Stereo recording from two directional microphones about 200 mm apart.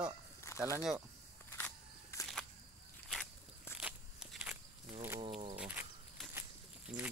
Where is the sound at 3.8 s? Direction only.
5° right (ahead or behind).